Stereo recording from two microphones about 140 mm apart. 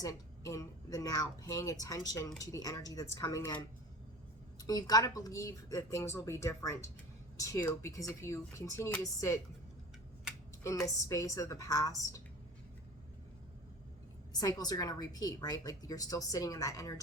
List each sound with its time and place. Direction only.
0.0 s a woman's voice: 25° left (ahead or behind)
4.6 s a woman's voice: 25° left (ahead or behind)
10.6 s a sound: 20° left (ahead or behind)
11.1 s a woman's voice: 20° left (ahead or behind)
14.3 s a woman's voice: 25° left (ahead or behind)